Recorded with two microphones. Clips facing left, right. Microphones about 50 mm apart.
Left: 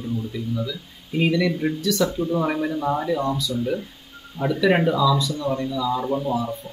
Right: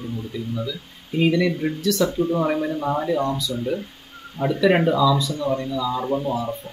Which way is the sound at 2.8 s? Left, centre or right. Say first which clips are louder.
Even; centre.